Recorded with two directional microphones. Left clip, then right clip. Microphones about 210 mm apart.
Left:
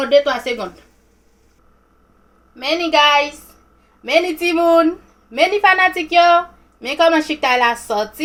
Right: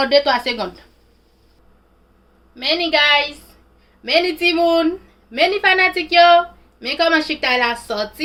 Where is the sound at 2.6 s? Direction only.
5° left (ahead or behind).